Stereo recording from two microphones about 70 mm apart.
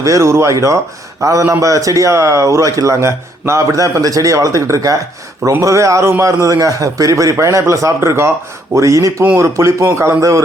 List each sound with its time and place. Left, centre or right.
0.0 s speech: right